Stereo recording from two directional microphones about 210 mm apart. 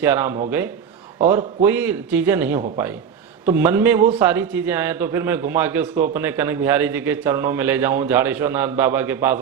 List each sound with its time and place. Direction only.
0.0 s a man's voice: 10° right (ahead or behind)